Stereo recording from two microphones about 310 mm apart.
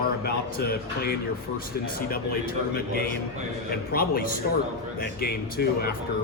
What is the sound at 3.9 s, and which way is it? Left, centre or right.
Speech, left.